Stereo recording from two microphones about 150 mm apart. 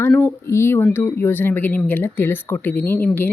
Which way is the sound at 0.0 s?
15° left (ahead or behind).